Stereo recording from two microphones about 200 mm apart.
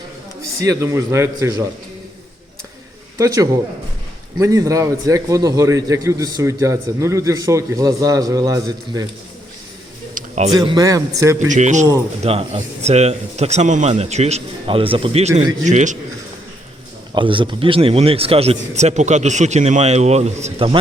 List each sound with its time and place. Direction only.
0.6 s a man's voice: 15° right (ahead or behind)
3.2 s a man's voice: 15° right (ahead or behind)
10.2 s a sound: 35° right (ahead or behind)
10.5 s a man's voice: 20° right (ahead or behind)
11.3 s speech: 40° right (ahead or behind)
17.2 s a man's voice: 25° right (ahead or behind)